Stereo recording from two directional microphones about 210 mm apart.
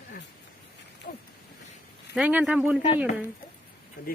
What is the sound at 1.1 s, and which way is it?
Speech, 45° left (ahead or behind).